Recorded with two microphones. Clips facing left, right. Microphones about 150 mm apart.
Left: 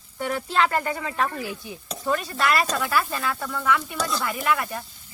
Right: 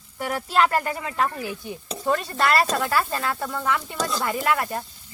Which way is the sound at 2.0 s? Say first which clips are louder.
Right 2 dB; 35° right (ahead or behind).